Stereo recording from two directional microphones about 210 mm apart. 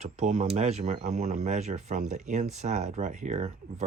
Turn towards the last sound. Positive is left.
turn(degrees=-35)  # may be behind; listen again after turning